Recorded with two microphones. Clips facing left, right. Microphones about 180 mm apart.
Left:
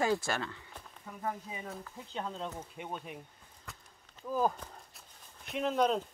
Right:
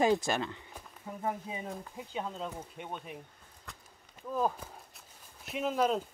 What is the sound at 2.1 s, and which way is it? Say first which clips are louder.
Speech: right 1 dB; 5° right (ahead or behind).